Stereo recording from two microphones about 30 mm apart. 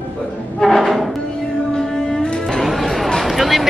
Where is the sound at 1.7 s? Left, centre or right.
Centre.